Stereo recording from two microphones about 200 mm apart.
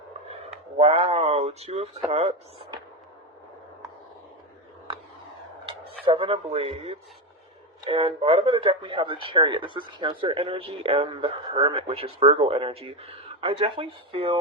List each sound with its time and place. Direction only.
0.8 s a sound: 30° right (ahead or behind)
2.0 s speech: 30° right (ahead or behind)
6.1 s speech: 25° right (ahead or behind)